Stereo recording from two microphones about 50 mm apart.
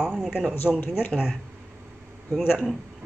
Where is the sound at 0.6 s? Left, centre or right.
Left.